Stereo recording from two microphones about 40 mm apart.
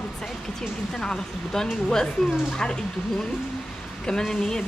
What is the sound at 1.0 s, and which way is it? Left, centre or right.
Speech, centre.